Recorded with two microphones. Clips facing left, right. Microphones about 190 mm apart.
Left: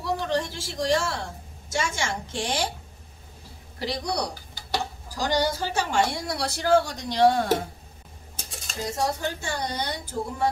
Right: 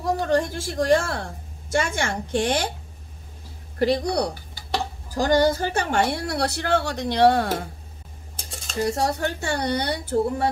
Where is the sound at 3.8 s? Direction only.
55° right (ahead or behind).